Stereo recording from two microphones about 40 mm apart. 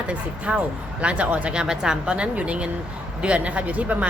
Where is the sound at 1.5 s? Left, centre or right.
Centre.